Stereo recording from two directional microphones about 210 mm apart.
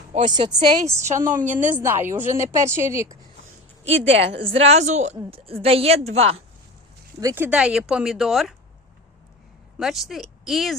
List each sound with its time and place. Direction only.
0.3 s a woman's voice: 20° right (ahead or behind)
1.1 s speech: 40° right (ahead or behind)
1.7 s speech: 10° right (ahead or behind)
4.4 s a woman's voice: 30° right (ahead or behind)
7.2 s speech: 10° right (ahead or behind)
9.7 s speech: centre (ahead or behind)